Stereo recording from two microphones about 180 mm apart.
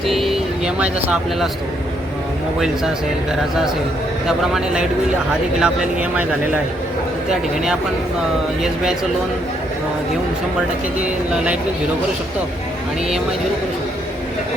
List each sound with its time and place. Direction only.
0.1 s speech: centre (ahead or behind)
4.3 s speech: 5° right (ahead or behind)
7.3 s speech: 5° right (ahead or behind)